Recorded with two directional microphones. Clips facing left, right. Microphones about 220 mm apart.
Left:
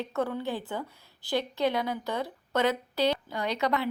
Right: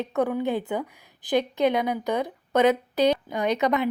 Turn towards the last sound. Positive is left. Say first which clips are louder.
# right 6 dB
turn(degrees=-20)  # may be behind; listen again after turning